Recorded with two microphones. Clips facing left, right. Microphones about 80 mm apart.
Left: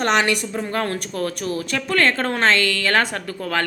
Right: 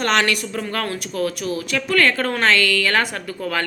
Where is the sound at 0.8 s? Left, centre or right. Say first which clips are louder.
Right 1 dB; left.